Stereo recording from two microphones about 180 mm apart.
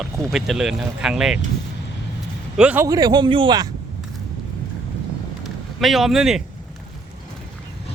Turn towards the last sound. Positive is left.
turn(degrees=0)  # may be behind; listen again after turning